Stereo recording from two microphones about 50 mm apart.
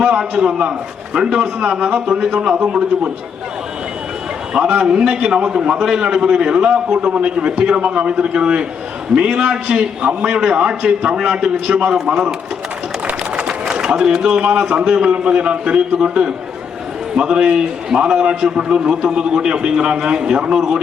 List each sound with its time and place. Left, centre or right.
0.0 s a man's voice: centre
4.5 s a man's voice: right
13.3 s a man's voice: centre